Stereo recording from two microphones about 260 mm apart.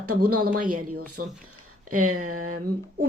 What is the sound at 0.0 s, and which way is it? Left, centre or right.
Speech, right.